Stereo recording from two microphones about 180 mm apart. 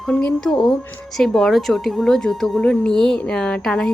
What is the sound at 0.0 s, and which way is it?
A woman's voice, 5° left (ahead or behind).